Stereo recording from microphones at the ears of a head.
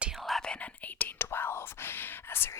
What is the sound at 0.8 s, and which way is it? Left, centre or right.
Speech, left.